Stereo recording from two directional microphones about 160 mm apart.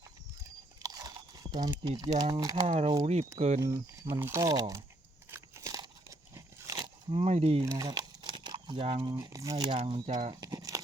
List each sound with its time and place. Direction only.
0.8 s biting: 25° right (ahead or behind)
2.0 s speech: 25° right (ahead or behind)
2.6 s speech: 40° right (ahead or behind)
3.6 s speech: 15° right (ahead or behind)
5.3 s crunch: 20° right (ahead or behind); by 7.6 s 40° right (ahead or behind)
7.6 s a sound: 20° right (ahead or behind); by 9.0 s 35° right (ahead or behind)
9.0 s speech: 20° right (ahead or behind)
9.6 s speech: 35° right (ahead or behind)
10.1 s speech: 50° right (ahead or behind)
10.4 s crumpling: 25° right (ahead or behind)